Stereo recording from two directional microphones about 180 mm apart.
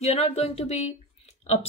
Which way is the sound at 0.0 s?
35° left (ahead or behind).